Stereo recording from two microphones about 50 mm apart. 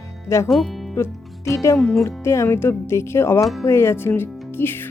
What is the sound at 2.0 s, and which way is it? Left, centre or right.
Speech, left.